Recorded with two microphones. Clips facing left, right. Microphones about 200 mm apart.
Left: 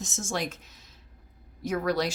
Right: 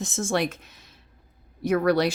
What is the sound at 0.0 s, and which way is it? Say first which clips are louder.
Speech: right 7 dB; 60° right (ahead or behind).